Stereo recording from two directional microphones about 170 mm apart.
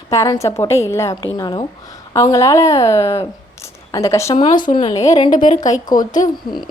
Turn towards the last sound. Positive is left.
turn(degrees=50)  # may be behind; listen again after turning